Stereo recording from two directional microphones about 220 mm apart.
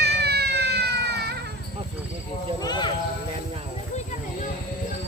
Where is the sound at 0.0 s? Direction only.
50° right (ahead or behind).